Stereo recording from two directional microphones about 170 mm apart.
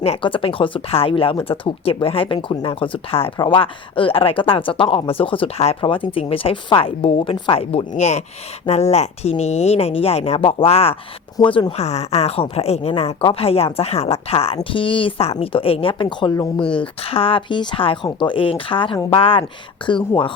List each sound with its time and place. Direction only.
0.0 s speech: 35° left (ahead or behind)
16.6 s speech: 5° left (ahead or behind)
16.8 s speech: 35° left (ahead or behind)